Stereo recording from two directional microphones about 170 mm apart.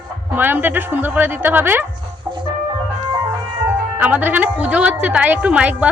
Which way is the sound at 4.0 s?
10° right (ahead or behind).